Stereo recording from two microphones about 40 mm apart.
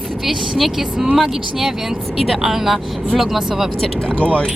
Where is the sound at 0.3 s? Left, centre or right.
Centre.